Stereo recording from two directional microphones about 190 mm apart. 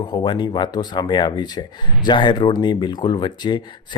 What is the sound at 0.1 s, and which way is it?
Speech, 25° left (ahead or behind).